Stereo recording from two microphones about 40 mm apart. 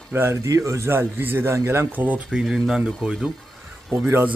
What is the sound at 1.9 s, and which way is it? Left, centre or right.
Speech, right.